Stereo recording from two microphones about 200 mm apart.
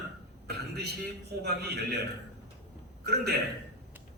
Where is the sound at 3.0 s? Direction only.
55° right (ahead or behind).